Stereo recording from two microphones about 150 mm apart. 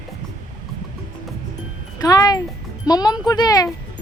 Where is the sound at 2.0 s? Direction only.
25° left (ahead or behind).